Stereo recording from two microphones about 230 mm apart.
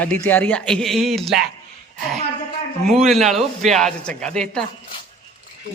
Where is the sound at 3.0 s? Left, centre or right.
Centre.